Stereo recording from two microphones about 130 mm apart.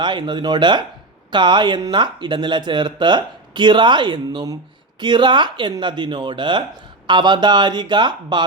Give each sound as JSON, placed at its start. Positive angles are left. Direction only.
{"t": 0.0, "sound": "speech", "side_deg": -35}